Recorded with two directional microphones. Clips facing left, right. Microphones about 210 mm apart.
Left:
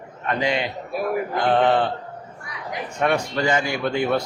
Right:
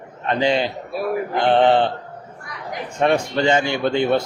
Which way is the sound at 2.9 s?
25° right (ahead or behind).